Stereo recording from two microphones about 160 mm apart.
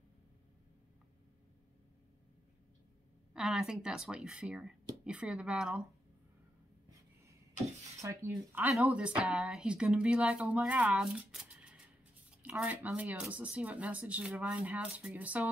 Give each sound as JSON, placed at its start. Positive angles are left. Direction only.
{"t": 3.3, "sound": "speech", "side_deg": -5}
{"t": 8.0, "sound": "speech", "side_deg": -15}